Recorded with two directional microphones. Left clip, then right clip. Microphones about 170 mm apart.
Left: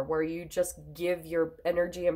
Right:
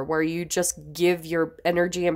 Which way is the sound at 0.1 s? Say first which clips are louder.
Right 6 dB; 55° right (ahead or behind).